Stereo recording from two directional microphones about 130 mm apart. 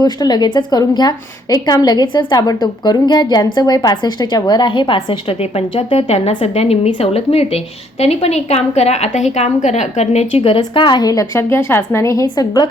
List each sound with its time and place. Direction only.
0.0 s a woman's voice: 30° left (ahead or behind); by 10.6 s 50° left (ahead or behind)
10.6 s a woman's voice: 35° left (ahead or behind)